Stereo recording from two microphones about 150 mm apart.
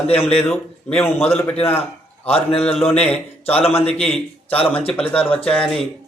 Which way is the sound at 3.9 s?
Centre (ahead or behind).